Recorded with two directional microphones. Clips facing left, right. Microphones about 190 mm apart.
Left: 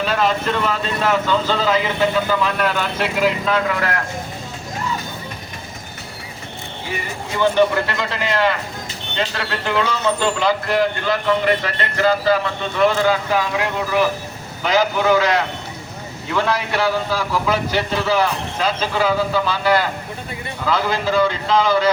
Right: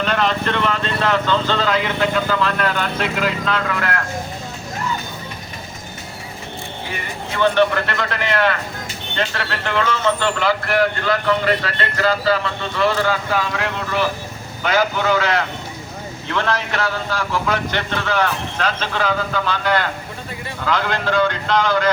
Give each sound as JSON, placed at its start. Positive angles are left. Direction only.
{"t": 0.0, "sound": "speech", "side_deg": 5}
{"t": 7.3, "sound": "speech", "side_deg": 10}
{"t": 9.6, "sound": "speech", "side_deg": 10}